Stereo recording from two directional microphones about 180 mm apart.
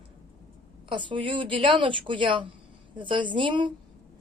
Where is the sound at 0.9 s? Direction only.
25° right (ahead or behind).